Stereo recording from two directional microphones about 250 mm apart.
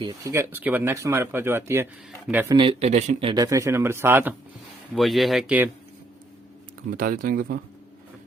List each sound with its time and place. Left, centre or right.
0.0 s speech: centre
2.6 s speech: right; by 5.6 s centre
6.9 s speech: right